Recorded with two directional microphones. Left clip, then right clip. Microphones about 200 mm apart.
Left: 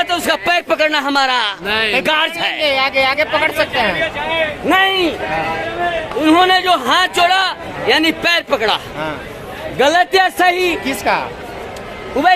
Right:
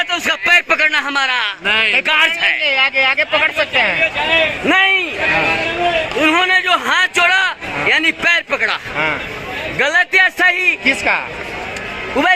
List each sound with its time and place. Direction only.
0.0 s a man's voice: 15° left (ahead or behind)
1.6 s music: 15° right (ahead or behind)
2.0 s a man's voice: 20° left (ahead or behind)
2.6 s a man's voice: 30° right (ahead or behind)
4.6 s a man's voice: centre (ahead or behind)
6.1 s a man's voice: 5° left (ahead or behind)
10.8 s a man's voice: 30° right (ahead or behind)
12.2 s a man's voice: 5° left (ahead or behind)